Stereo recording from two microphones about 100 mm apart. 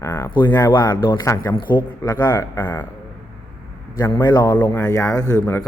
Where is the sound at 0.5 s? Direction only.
45° left (ahead or behind).